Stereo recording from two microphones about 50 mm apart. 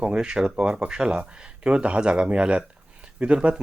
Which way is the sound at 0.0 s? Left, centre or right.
Centre.